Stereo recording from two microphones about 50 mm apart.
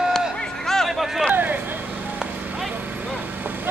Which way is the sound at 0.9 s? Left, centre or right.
Centre.